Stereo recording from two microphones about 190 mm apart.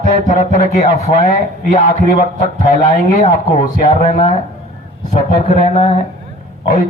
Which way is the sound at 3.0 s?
40° left (ahead or behind).